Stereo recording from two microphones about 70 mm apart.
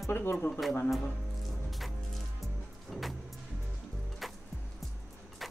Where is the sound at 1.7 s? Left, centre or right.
Centre.